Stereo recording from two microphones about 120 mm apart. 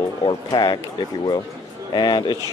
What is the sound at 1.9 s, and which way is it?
Speech, 35° left (ahead or behind).